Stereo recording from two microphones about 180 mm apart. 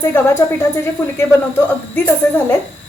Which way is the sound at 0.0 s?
15° left (ahead or behind).